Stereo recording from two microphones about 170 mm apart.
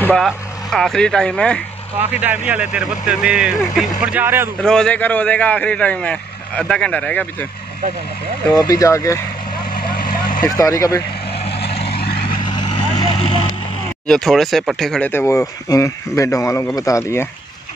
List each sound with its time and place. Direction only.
0.0 s speech: 5° left (ahead or behind)
2.0 s speech: 10° right (ahead or behind)
4.6 s speech: 5° left (ahead or behind)
8.5 s speech: 20° left (ahead or behind)
9.8 s vehicle: 60° left (ahead or behind)
10.4 s speech: 20° left (ahead or behind)
11.7 s vehicle: 35° left (ahead or behind)
14.0 s speech: centre (ahead or behind)